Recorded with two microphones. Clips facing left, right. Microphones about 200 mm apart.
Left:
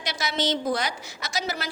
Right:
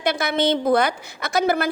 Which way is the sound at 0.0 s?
55° right (ahead or behind).